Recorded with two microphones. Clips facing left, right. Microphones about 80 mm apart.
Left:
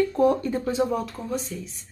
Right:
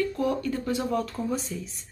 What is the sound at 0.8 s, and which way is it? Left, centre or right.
Speech, centre.